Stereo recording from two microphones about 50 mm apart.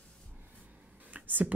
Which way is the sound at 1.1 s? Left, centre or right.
Right.